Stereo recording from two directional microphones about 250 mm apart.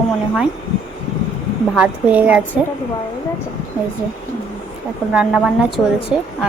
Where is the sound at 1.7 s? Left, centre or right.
Centre.